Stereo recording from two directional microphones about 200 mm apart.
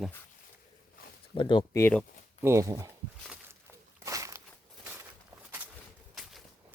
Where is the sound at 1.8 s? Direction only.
5° left (ahead or behind).